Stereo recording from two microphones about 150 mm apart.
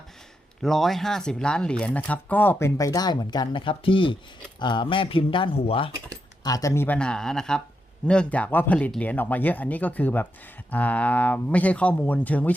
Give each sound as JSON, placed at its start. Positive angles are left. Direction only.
{"t": 0.6, "sound": "speech", "side_deg": 0}
{"t": 6.4, "sound": "speech", "side_deg": 25}